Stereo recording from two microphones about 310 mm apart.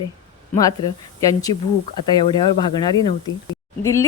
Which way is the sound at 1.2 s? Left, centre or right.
Centre.